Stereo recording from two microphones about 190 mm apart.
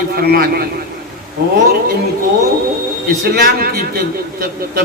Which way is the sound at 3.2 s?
50° right (ahead or behind).